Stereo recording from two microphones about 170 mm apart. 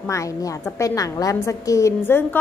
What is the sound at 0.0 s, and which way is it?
A woman's voice, 20° left (ahead or behind).